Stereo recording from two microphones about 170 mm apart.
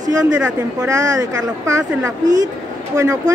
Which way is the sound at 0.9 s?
20° right (ahead or behind).